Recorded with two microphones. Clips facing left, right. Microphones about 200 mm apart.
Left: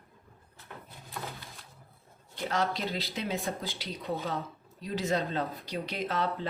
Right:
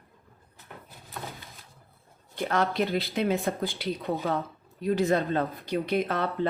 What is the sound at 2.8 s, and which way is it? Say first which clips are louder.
Speech: right 8 dB; 60° right (ahead or behind).